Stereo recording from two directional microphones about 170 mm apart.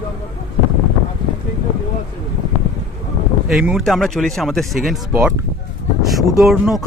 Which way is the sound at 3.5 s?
Centre (ahead or behind).